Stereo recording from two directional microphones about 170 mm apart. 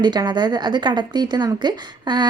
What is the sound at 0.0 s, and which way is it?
Speech, 25° right (ahead or behind).